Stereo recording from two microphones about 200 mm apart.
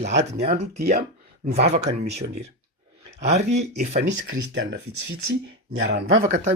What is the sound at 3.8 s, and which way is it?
Speech, 35° right (ahead or behind).